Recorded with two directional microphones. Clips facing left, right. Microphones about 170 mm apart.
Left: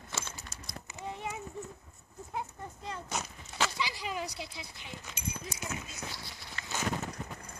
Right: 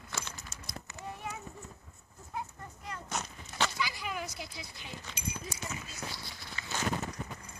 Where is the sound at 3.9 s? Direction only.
30° left (ahead or behind).